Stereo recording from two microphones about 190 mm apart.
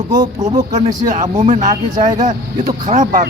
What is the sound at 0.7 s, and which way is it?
Speech, 40° right (ahead or behind).